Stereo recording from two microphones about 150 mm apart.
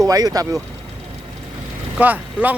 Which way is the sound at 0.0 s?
25° right (ahead or behind).